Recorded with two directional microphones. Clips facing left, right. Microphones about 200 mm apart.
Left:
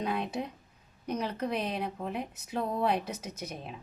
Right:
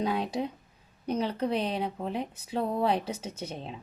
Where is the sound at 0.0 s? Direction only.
35° right (ahead or behind).